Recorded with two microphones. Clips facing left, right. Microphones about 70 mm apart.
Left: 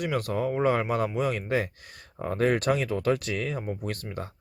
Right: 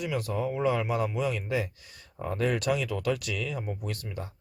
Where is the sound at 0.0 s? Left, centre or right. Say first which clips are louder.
Left 3 dB; left.